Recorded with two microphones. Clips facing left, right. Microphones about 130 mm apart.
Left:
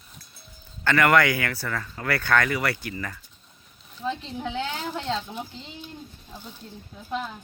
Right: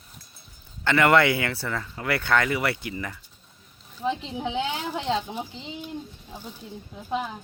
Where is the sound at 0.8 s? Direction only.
20° right (ahead or behind).